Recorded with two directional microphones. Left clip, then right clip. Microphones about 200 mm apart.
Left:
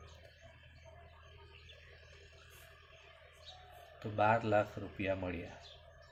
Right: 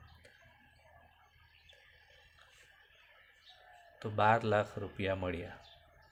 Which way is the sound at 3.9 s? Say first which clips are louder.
Right 2 dB; 45° right (ahead or behind).